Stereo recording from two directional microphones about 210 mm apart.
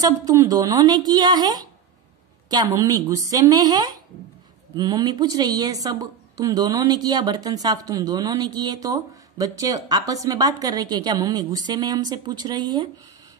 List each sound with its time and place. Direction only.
0.0 s a woman's voice: 15° right (ahead or behind)